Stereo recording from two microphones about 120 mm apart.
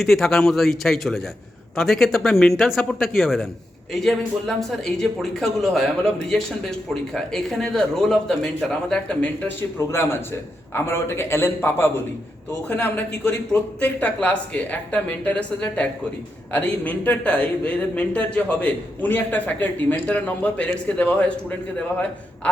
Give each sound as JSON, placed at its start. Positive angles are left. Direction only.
{"t": 0.0, "sound": "a man's voice", "side_deg": 0}
{"t": 9.7, "sound": "a man's voice", "side_deg": 20}